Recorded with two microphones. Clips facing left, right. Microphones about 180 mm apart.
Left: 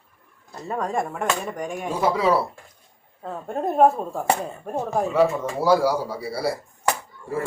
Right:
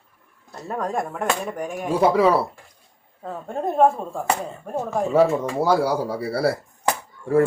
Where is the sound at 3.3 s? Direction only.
Centre (ahead or behind).